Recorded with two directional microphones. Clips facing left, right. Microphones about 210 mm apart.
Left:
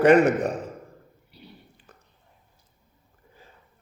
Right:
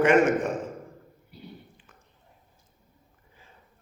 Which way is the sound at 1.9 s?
40° left (ahead or behind).